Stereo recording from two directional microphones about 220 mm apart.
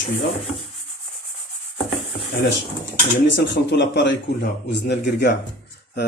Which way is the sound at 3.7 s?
50° left (ahead or behind).